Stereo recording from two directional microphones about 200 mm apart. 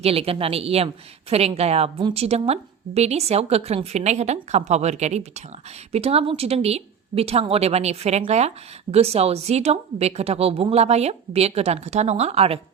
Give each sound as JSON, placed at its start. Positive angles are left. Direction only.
{"t": 0.0, "sound": "a woman's voice", "side_deg": -30}